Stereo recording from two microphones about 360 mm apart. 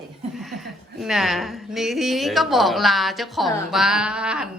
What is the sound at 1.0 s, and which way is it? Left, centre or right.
A woman's voice, centre.